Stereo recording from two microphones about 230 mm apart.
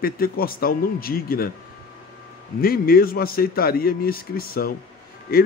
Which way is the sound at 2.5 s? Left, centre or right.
Left.